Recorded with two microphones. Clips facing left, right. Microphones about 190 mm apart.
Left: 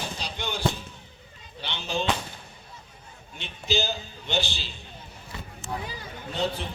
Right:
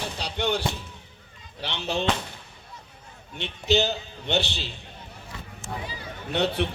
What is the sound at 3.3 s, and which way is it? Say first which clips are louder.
Speech: right 5 dB; 65° right (ahead or behind).